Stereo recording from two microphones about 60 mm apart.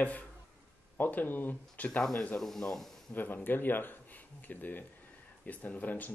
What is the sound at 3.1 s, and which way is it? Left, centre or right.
Speech, left.